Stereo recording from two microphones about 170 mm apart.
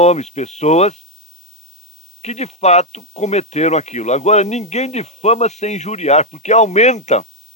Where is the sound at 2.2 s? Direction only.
40° left (ahead or behind).